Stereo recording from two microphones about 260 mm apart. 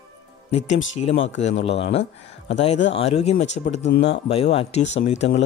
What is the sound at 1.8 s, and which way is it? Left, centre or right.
Speech, left.